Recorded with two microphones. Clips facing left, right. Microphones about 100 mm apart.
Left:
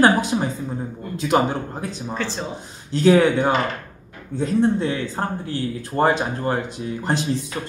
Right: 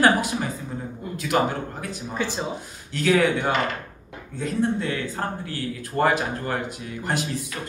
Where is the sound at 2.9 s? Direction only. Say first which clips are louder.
Left 5 dB; 30° left (ahead or behind).